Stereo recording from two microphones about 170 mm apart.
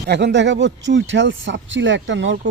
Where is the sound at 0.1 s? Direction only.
90° right.